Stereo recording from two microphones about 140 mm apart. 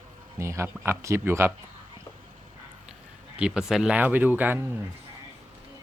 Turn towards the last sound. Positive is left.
turn(degrees=-15)  # may be behind; listen again after turning